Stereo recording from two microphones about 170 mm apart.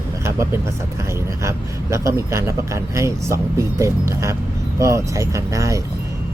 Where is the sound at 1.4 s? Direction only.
15° right (ahead or behind).